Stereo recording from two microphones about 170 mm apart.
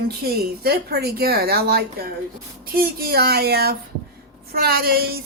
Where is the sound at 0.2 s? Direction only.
65° right (ahead or behind).